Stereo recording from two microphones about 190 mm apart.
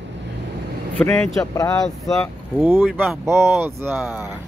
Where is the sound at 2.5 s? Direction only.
10° right (ahead or behind).